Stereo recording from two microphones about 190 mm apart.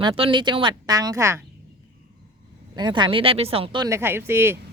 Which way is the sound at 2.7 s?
25° right (ahead or behind).